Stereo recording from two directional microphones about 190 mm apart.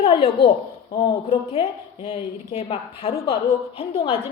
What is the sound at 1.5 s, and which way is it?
A woman's voice, 35° left (ahead or behind).